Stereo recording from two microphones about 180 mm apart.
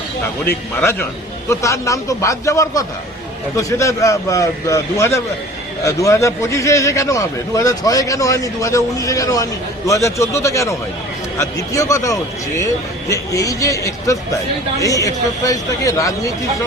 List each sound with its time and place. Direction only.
0.8 s a man's voice: 10° left (ahead or behind)